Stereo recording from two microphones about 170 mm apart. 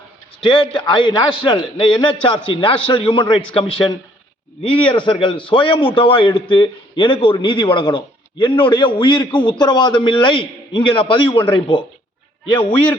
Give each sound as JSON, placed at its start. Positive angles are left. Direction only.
{"t": 0.4, "sound": "a man's voice", "side_deg": 30}
{"t": 12.5, "sound": "a man's voice", "side_deg": 30}